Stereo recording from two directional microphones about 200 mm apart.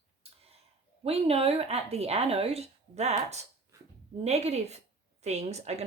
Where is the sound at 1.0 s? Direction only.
30° right (ahead or behind).